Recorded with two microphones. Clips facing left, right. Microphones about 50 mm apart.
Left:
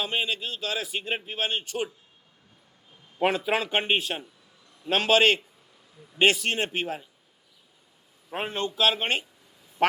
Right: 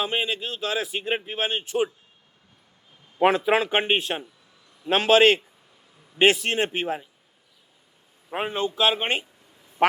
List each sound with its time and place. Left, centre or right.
0.0 s a man's voice: right
3.2 s a man's voice: centre
8.3 s a man's voice: centre